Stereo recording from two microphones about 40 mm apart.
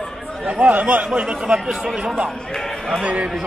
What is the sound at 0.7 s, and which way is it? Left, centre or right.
Speech, right.